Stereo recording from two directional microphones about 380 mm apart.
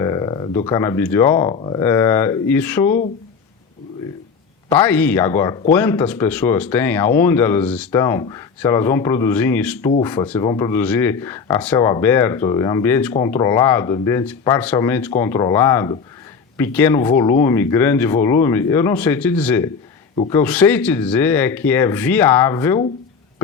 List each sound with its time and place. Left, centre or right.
0.0 s speech: centre
4.8 s speech: centre
20.1 s speech: centre
20.4 s speech: centre